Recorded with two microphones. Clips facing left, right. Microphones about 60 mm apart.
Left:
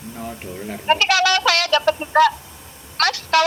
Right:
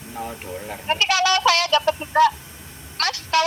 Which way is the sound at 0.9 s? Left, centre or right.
Left.